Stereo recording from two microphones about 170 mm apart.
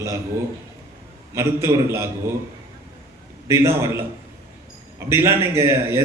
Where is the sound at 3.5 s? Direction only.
15° right (ahead or behind).